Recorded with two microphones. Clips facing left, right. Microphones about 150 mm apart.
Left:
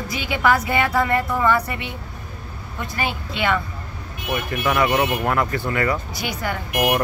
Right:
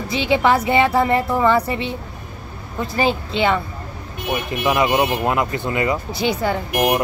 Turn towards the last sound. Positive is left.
turn(degrees=-20)  # may be behind; listen again after turning